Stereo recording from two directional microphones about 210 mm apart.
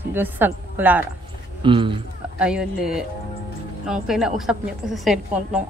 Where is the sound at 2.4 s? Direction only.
5° right (ahead or behind).